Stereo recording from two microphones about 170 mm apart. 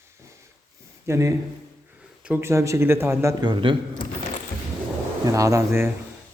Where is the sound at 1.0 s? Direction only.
20° right (ahead or behind).